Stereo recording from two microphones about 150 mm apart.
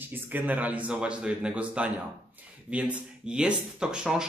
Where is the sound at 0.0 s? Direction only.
15° right (ahead or behind).